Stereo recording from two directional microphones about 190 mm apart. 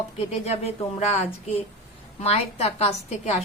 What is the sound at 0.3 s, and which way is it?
A woman's voice, 35° left (ahead or behind).